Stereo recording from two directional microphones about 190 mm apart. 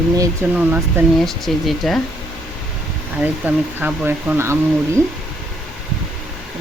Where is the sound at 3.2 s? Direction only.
10° right (ahead or behind).